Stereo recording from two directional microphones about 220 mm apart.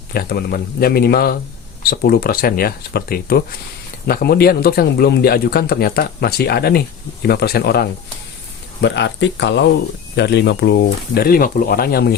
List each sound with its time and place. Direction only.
0.1 s speech: 45° left (ahead or behind)